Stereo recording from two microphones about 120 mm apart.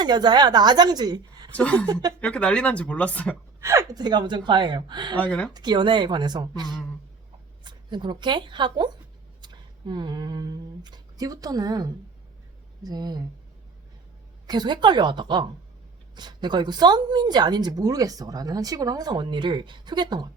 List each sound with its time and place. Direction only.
0.0 s speech: 35° right (ahead or behind)
1.5 s speech: 10° left (ahead or behind)
1.9 s speech: 35° right (ahead or behind)
2.2 s speech: 10° left (ahead or behind)
3.6 s speech: 25° right (ahead or behind)
5.1 s speech: 10° left (ahead or behind)
5.5 s speech: 40° right (ahead or behind)
14.4 s speech: 35° right (ahead or behind)